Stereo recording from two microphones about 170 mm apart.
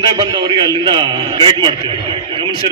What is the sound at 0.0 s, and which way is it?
A man's voice, 25° right (ahead or behind).